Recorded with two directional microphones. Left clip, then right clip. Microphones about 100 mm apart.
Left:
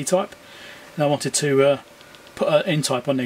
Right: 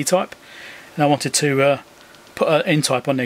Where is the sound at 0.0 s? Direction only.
35° right (ahead or behind).